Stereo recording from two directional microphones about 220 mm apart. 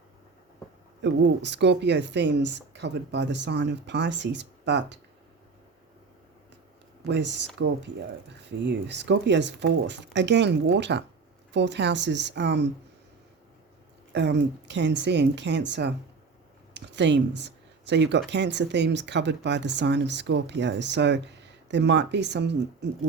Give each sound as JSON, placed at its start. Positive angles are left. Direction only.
{"t": 1.0, "sound": "speech", "side_deg": -55}
{"t": 7.0, "sound": "speech", "side_deg": -50}
{"t": 14.1, "sound": "speech", "side_deg": -50}
{"t": 16.7, "sound": "a sound", "side_deg": -50}
{"t": 18.3, "sound": "speech", "side_deg": -50}